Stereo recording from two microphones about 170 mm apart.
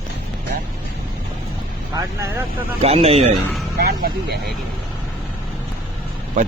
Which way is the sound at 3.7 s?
65° right (ahead or behind).